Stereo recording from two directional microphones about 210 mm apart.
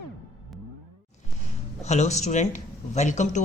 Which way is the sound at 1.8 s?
30° left (ahead or behind).